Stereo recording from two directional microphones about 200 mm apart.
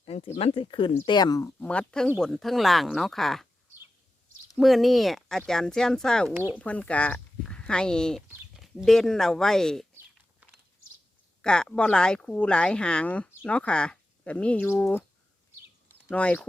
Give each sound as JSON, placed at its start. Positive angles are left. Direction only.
{"t": 0.0, "sound": "speech", "side_deg": 30}
{"t": 4.5, "sound": "speech", "side_deg": 0}
{"t": 6.3, "sound": "speech", "side_deg": -10}
{"t": 6.6, "sound": "speech", "side_deg": 5}
{"t": 11.4, "sound": "speech", "side_deg": 5}
{"t": 16.0, "sound": "speech", "side_deg": 5}